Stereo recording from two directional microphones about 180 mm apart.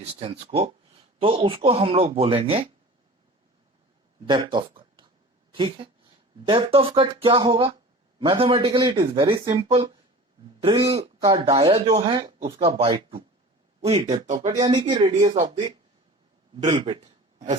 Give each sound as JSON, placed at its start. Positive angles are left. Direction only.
{"t": 0.0, "sound": "speech", "side_deg": -30}
{"t": 4.5, "sound": "a sound", "side_deg": -25}
{"t": 5.5, "sound": "speech", "side_deg": -30}
{"t": 14.6, "sound": "speech", "side_deg": -25}
{"t": 16.6, "sound": "speech", "side_deg": -30}
{"t": 17.0, "sound": "a sound", "side_deg": -40}